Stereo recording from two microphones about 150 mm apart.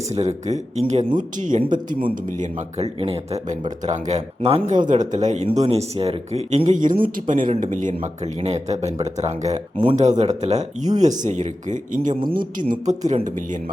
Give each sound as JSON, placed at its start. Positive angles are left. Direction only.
{"t": 0.1, "sound": "speech", "side_deg": -45}
{"t": 2.4, "sound": "speech", "side_deg": -45}
{"t": 4.7, "sound": "speech", "side_deg": -55}